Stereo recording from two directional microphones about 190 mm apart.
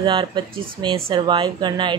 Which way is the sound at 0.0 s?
25° right (ahead or behind).